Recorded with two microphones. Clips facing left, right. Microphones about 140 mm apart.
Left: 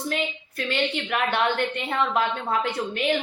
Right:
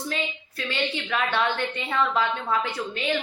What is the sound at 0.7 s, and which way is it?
A woman's voice, 55° left (ahead or behind).